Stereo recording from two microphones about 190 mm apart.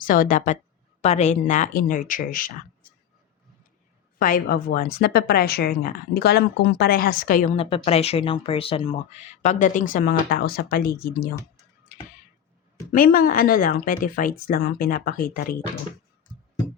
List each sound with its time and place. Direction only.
0.0 s a woman's voice: 45° left (ahead or behind)
4.2 s a woman's voice: 50° left (ahead or behind)
7.5 s speech: 30° left (ahead or behind); by 11.3 s 50° left (ahead or behind)
12.9 s a woman's voice: 50° left (ahead or behind)